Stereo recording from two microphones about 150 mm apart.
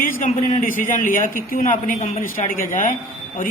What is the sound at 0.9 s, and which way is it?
A man's voice, 65° left (ahead or behind).